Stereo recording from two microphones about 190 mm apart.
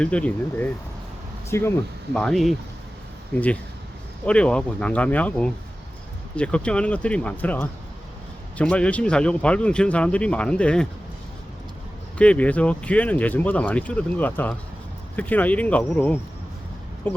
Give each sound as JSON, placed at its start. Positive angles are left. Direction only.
{"t": 0.0, "sound": "speech", "side_deg": 5}
{"t": 2.1, "sound": "speech", "side_deg": 0}
{"t": 4.3, "sound": "speech", "side_deg": 5}
{"t": 12.1, "sound": "speech", "side_deg": 5}